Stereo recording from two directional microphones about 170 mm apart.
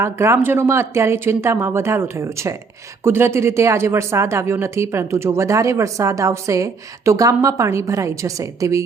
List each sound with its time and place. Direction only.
0.0 s speech: 15° right (ahead or behind)